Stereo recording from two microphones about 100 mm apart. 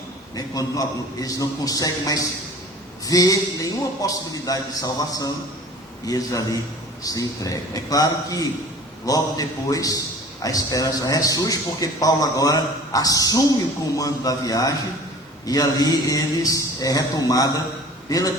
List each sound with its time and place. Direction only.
0.3 s a man's voice: 35° left (ahead or behind)